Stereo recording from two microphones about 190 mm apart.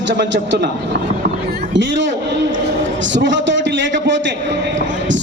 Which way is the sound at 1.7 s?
75° right (ahead or behind).